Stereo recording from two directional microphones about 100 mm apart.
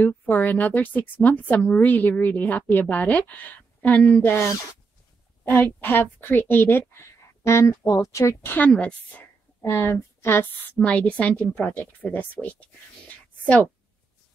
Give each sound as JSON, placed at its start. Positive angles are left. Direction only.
{"t": 0.0, "sound": "speech", "side_deg": 15}
{"t": 5.5, "sound": "a woman's voice", "side_deg": 20}
{"t": 7.7, "sound": "speech", "side_deg": 45}
{"t": 8.0, "sound": "speech", "side_deg": 30}
{"t": 8.5, "sound": "speech", "side_deg": 10}
{"t": 9.6, "sound": "speech", "side_deg": 25}